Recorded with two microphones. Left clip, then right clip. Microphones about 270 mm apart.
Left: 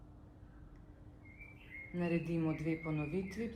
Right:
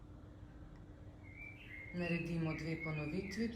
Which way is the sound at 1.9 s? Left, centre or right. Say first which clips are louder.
Left 4 dB; left.